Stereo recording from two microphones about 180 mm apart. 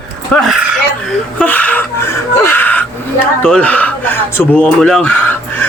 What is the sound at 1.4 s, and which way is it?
Speech, 10° left (ahead or behind).